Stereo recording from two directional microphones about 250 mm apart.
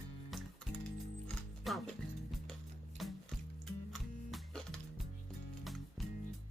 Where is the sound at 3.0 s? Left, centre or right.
Centre.